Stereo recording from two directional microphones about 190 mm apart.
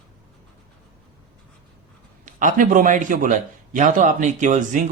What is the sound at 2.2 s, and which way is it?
A man's voice, 45° right (ahead or behind).